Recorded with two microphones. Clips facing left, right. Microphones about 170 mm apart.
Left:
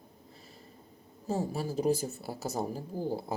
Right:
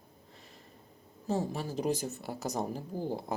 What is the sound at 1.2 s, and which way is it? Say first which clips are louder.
Speech: even; 10° left (ahead or behind).